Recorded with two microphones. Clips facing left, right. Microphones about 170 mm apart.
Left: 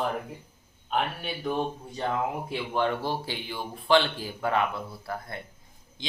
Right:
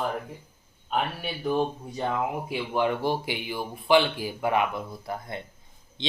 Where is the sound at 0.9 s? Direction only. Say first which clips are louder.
Even; 5° right (ahead or behind).